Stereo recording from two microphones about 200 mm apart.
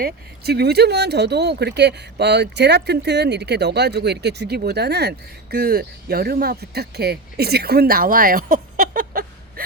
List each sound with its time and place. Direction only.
0.0 s speech: 55° right (ahead or behind)